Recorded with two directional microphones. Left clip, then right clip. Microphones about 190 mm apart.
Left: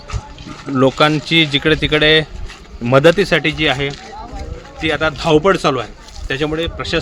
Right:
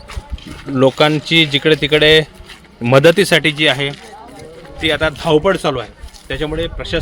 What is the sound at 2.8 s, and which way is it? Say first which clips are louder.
Speech: right 1 dB; 45° right (ahead or behind).